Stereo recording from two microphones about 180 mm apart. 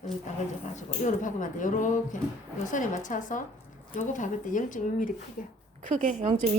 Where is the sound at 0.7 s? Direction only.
45° left (ahead or behind).